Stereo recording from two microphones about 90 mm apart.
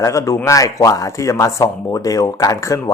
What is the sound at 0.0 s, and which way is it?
Speech, 35° left (ahead or behind).